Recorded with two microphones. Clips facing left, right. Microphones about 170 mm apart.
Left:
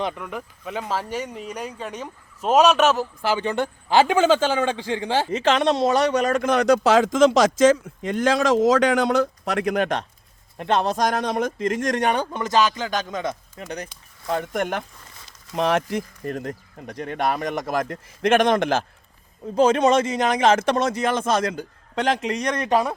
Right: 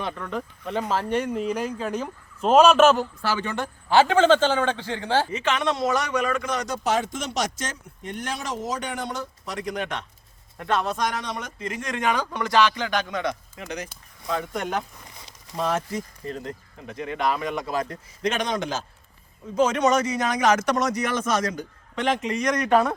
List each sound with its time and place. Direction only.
0.0 s speech: 15° left (ahead or behind)
3.2 s a man's voice: 20° left (ahead or behind)
5.3 s a man's voice: 35° left (ahead or behind)
6.5 s speech: 70° left (ahead or behind)
10.6 s a man's voice: 25° left (ahead or behind)
14.3 s a man's voice: 50° left (ahead or behind)
15.0 s a sound: 20° right (ahead or behind)
15.5 s speech: 70° left (ahead or behind); by 17.5 s 50° left (ahead or behind)
17.7 s a man's voice: 60° left (ahead or behind)
19.5 s speech: 30° left (ahead or behind)
22.1 s a man's voice: 80° left
22.4 s a man's voice: 30° left (ahead or behind)